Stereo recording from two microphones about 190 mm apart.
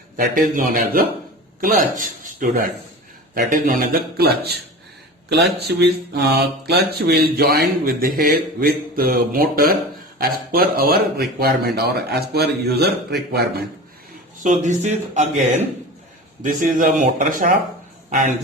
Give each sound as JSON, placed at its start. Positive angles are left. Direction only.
{"t": 0.2, "sound": "mantra", "side_deg": -45}
{"t": 5.6, "sound": "mantra", "side_deg": -60}
{"t": 10.2, "sound": "speech", "side_deg": -50}
{"t": 14.4, "sound": "speech", "side_deg": -40}
{"t": 16.4, "sound": "mantra", "side_deg": -45}